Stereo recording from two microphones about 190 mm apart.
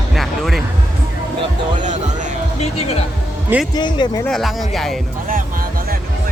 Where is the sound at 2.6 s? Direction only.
30° left (ahead or behind).